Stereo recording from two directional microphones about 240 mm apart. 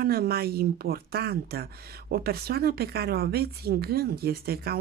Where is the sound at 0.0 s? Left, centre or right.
Right.